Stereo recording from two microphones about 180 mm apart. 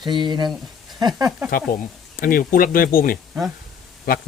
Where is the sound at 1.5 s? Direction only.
50° left (ahead or behind).